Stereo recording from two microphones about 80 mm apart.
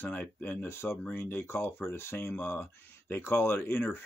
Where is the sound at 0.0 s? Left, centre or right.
Left.